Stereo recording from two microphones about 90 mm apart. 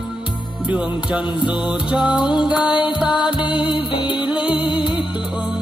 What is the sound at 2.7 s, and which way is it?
Music, 60° left (ahead or behind).